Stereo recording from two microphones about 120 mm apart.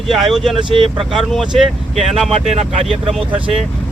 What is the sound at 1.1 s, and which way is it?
Speech, centre (ahead or behind).